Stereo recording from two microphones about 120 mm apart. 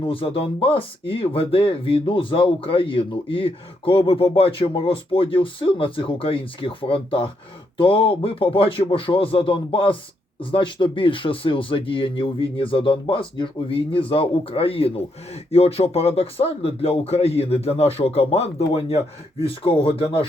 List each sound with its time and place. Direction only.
0.0 s speech: 50° left (ahead or behind)